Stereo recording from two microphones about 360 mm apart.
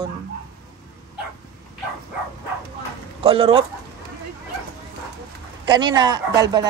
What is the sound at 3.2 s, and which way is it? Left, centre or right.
Speech, centre.